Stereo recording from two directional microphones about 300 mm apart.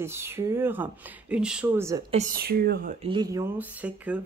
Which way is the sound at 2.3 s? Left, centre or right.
Right.